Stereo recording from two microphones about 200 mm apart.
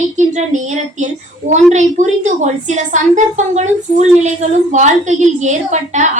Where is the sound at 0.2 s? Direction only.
40° right (ahead or behind).